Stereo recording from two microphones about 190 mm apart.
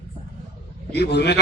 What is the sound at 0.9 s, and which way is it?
Speech, 60° left (ahead or behind).